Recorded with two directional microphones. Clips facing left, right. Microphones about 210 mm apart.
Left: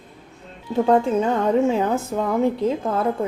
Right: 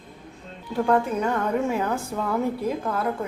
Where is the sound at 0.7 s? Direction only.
25° left (ahead or behind).